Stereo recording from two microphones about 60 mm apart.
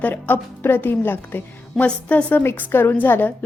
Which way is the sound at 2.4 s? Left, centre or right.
Left.